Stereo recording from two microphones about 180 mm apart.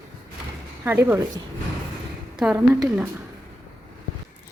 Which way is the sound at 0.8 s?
10° right (ahead or behind).